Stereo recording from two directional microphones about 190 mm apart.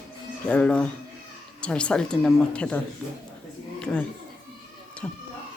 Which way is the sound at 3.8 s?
5° left (ahead or behind).